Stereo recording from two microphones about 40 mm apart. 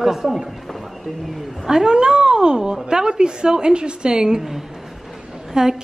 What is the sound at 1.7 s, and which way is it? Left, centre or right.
A woman's voice, centre.